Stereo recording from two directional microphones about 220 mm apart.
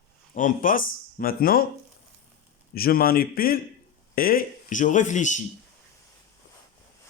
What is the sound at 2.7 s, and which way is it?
Speech, 45° left (ahead or behind).